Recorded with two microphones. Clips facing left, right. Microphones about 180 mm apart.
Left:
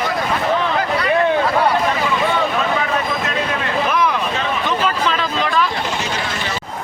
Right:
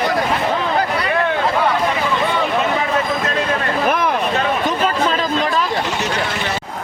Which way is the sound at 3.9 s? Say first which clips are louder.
Right 2 dB; 50° right (ahead or behind).